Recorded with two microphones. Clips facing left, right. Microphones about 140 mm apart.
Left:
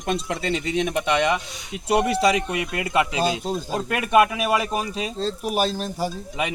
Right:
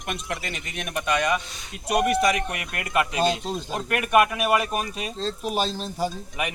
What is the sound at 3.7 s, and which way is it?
Speech, 25° left (ahead or behind).